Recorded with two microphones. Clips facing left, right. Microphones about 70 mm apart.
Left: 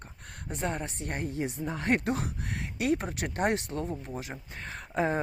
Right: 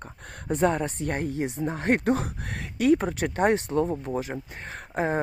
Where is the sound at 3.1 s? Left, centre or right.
Right.